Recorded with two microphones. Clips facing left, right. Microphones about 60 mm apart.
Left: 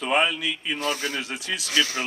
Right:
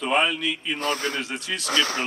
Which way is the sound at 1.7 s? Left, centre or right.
Right.